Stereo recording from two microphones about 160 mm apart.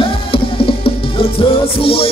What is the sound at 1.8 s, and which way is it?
Music, 35° left (ahead or behind).